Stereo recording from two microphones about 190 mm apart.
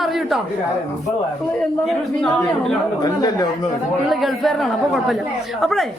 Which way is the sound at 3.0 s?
20° left (ahead or behind).